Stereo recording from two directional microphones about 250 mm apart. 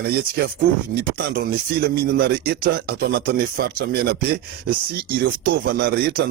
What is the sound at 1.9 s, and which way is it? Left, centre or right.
Speech, right.